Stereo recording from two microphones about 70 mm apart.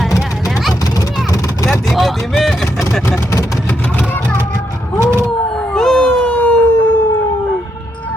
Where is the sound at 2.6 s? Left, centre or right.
Left.